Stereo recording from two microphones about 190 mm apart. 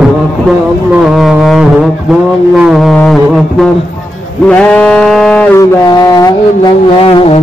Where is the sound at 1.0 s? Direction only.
Centre (ahead or behind).